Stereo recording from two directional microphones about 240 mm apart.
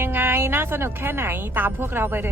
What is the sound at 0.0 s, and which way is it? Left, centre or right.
A woman's voice, centre.